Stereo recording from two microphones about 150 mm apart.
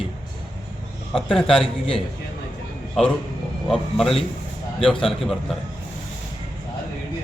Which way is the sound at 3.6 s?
Centre (ahead or behind).